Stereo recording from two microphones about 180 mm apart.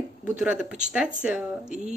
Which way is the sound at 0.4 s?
5° right (ahead or behind).